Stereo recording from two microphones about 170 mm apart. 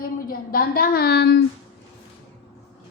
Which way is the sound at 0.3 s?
60° left (ahead or behind).